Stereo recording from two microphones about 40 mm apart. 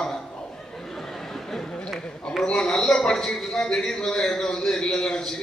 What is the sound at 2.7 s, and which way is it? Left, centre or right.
A man's voice, centre.